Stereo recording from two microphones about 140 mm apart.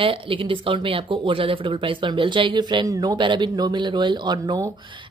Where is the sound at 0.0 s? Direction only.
40° right (ahead or behind).